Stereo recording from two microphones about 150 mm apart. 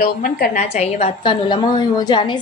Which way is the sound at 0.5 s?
45° left (ahead or behind).